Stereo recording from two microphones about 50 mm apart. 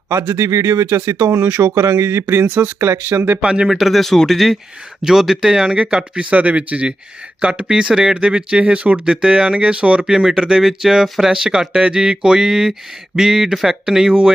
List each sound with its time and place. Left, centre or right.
0.1 s speech: right
0.4 s speech: right
1.7 s speech: right
3.4 s speech: right
3.7 s speech: centre
6.3 s speech: right; by 14.3 s centre